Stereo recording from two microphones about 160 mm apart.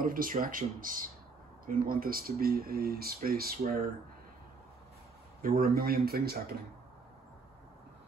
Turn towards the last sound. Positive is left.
turn(degrees=-70)  # may be behind; listen again after turning